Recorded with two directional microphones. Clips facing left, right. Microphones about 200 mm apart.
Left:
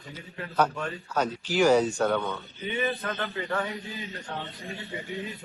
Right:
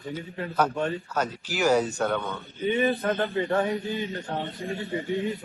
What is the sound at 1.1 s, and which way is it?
Speech, 10° right (ahead or behind).